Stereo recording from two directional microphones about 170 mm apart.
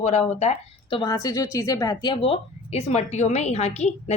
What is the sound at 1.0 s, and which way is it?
A woman's voice, 20° left (ahead or behind).